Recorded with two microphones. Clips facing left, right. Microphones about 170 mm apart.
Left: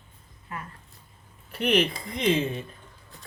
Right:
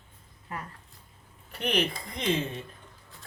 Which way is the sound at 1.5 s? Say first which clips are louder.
Left 5 dB; 5° left (ahead or behind).